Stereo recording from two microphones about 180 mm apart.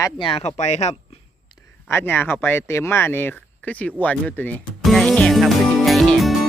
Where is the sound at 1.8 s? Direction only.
10° left (ahead or behind).